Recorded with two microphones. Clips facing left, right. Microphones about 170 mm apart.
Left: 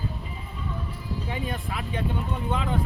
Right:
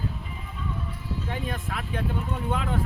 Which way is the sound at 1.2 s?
Centre (ahead or behind).